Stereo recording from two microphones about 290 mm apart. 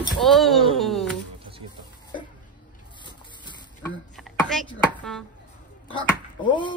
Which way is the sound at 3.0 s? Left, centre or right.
Centre.